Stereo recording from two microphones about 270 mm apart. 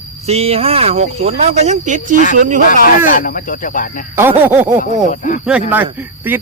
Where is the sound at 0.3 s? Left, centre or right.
Right.